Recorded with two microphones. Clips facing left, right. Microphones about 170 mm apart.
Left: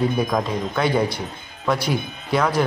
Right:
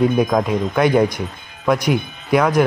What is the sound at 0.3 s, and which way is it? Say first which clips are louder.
Speech: right 5 dB; 15° right (ahead or behind).